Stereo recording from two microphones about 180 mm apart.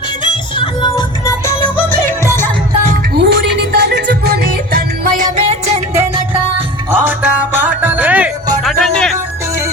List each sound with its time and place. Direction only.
0.6 s music: 25° left (ahead or behind)
3.2 s music: 65° right (ahead or behind); by 5.5 s 45° right (ahead or behind)
6.9 s music: 10° right (ahead or behind)
8.6 s music: 5° left (ahead or behind)